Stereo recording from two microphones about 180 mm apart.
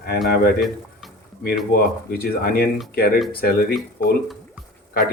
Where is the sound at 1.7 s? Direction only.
60° left (ahead or behind).